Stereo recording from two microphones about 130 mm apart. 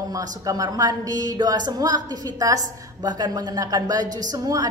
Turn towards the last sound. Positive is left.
turn(degrees=-25)  # may be behind; listen again after turning